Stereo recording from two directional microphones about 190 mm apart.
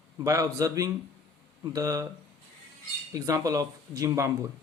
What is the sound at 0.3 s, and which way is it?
Speech, 15° right (ahead or behind).